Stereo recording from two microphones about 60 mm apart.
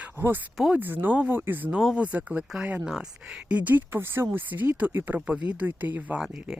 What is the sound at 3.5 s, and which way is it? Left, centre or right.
Speech, right.